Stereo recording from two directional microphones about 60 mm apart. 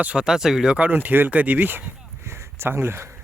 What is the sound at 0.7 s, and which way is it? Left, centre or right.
Speech, right.